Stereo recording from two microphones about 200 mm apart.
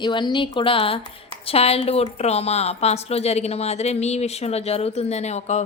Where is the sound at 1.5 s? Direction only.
30° left (ahead or behind).